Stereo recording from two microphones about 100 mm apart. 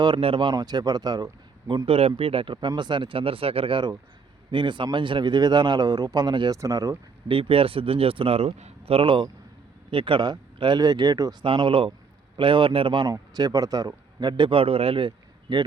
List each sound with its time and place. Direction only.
0.0 s a man's voice: 60° right (ahead or behind)
2.0 s a man's voice: 80° right; by 6.6 s 50° right (ahead or behind)
6.6 s speech: 35° right (ahead or behind)
7.3 s a man's voice: 65° right (ahead or behind); by 11.3 s 40° right (ahead or behind)
11.4 s speech: 60° right (ahead or behind)